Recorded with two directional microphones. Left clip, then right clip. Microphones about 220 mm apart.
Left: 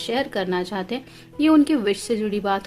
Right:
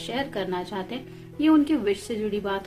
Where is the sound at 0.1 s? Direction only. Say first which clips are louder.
Left 5 dB; 50° left (ahead or behind).